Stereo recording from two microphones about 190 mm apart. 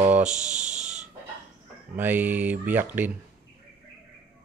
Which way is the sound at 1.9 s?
10° right (ahead or behind).